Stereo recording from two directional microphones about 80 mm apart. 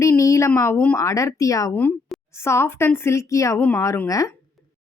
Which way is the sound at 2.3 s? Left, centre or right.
Left.